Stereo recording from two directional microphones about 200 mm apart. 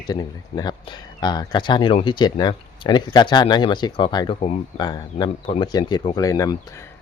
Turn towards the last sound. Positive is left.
turn(degrees=15)  # may be behind; listen again after turning